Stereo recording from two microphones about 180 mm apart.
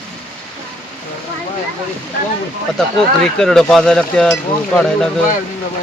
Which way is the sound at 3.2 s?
5° left (ahead or behind).